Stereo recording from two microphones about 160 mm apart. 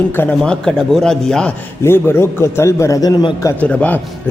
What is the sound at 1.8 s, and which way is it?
A man's voice, 15° left (ahead or behind).